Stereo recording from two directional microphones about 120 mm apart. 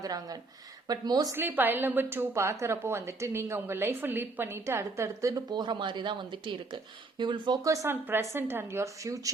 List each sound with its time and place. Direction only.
0.0 s speech: 30° right (ahead or behind)
1.4 s a woman's voice: 15° right (ahead or behind)
5.3 s a woman's voice: 35° right (ahead or behind)